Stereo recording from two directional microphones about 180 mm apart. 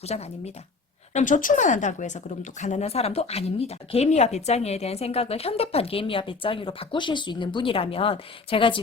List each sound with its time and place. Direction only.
0.0 s speech: 35° left (ahead or behind)